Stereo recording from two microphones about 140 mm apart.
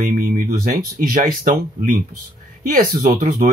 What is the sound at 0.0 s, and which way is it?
Speech, 90° right.